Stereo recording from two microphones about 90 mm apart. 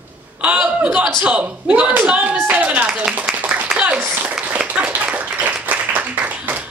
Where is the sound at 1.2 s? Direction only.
15° right (ahead or behind).